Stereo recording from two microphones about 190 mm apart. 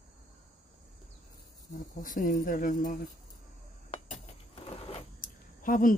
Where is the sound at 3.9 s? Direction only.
30° left (ahead or behind).